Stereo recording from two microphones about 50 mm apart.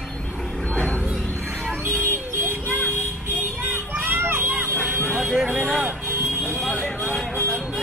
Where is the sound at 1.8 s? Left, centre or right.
Right.